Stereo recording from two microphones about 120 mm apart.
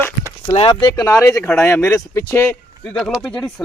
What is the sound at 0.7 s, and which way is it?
Speech, 40° left (ahead or behind).